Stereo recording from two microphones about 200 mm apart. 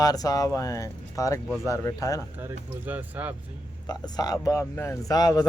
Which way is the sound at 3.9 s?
20° left (ahead or behind).